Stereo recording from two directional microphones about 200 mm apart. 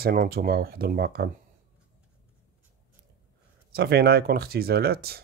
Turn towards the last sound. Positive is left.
turn(degrees=-50)  # may be behind; listen again after turning